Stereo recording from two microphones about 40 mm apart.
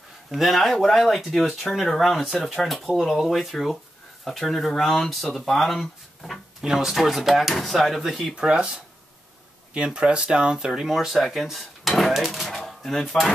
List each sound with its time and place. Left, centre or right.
0.3 s speech: centre
6.7 s speech: centre
8.4 s speech: right
9.8 s speech: right
10.7 s speech: centre
12.5 s a sound: centre